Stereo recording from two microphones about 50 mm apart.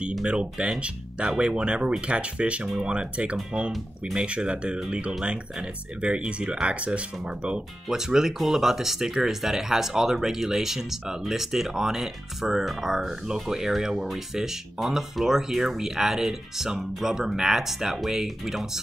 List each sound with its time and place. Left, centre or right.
0.2 s speech: right